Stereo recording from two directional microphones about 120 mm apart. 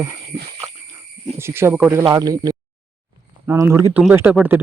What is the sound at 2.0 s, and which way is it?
Speech, 30° right (ahead or behind).